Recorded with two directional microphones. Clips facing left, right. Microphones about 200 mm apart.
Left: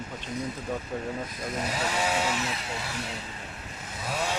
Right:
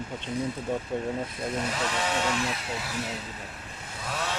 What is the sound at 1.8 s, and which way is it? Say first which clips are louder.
Chainsaw: left 1 dB; 10° left (ahead or behind).